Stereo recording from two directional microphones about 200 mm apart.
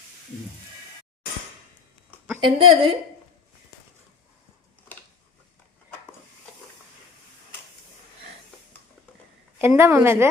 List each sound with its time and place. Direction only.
2.4 s a woman's voice: 25° right (ahead or behind)
9.6 s a woman's voice: 10° right (ahead or behind)